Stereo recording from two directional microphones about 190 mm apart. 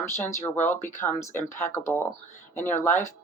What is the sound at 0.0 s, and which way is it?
Speech, 15° left (ahead or behind).